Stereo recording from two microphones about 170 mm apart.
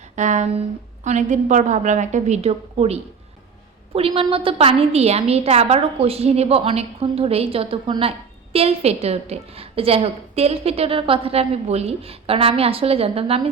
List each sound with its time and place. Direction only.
0.2 s a woman's voice: 45° right (ahead or behind)